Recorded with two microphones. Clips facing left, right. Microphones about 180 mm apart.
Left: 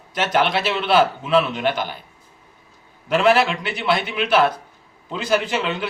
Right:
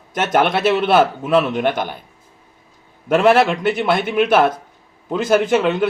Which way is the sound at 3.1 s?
50° right (ahead or behind).